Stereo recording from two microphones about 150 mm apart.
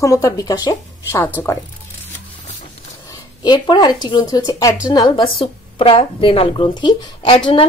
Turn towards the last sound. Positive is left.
turn(degrees=30)  # may be behind; listen again after turning